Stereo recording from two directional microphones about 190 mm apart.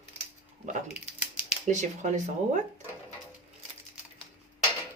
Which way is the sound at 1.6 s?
40° right (ahead or behind).